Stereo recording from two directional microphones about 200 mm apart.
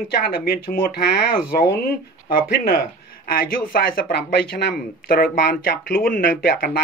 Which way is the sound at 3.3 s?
45° left (ahead or behind).